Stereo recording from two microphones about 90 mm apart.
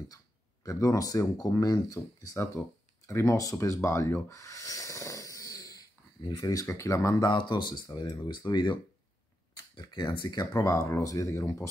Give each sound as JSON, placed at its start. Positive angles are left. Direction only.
{"t": 0.7, "sound": "speech", "side_deg": 40}
{"t": 3.1, "sound": "a sound", "side_deg": 30}
{"t": 6.4, "sound": "speech", "side_deg": 40}
{"t": 7.2, "sound": "speech", "side_deg": 50}
{"t": 9.8, "sound": "speech", "side_deg": 55}